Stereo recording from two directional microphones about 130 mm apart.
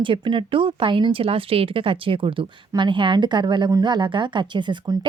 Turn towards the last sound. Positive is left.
turn(degrees=-35)  # may be behind; listen again after turning